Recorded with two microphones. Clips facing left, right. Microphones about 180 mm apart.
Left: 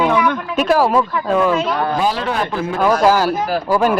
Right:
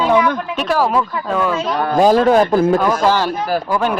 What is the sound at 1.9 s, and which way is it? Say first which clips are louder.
Speech: right 8 dB; 45° right (ahead or behind).